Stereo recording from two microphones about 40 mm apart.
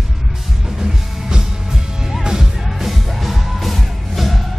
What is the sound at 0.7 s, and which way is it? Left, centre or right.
Music, centre.